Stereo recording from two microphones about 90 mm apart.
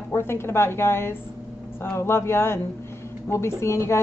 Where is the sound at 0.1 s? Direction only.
25° left (ahead or behind).